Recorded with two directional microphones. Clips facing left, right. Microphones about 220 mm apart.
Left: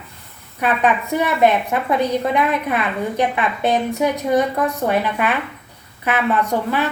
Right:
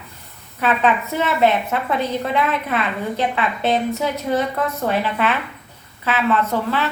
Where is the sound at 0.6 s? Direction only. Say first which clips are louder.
Even; 15° left (ahead or behind).